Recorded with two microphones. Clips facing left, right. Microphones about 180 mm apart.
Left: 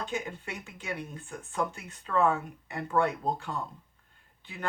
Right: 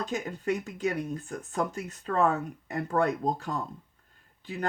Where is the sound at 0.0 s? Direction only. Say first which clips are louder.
Right 4 dB; 40° right (ahead or behind).